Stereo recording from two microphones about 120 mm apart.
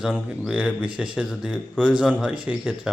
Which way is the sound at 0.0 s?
5° right (ahead or behind).